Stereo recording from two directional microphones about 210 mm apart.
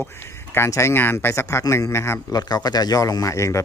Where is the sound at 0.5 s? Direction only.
10° left (ahead or behind).